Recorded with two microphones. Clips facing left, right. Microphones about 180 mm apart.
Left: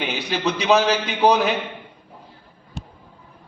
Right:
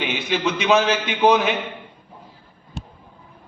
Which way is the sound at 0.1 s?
35° left (ahead or behind).